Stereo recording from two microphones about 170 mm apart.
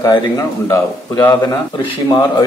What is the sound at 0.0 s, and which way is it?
A man's voice, 20° left (ahead or behind).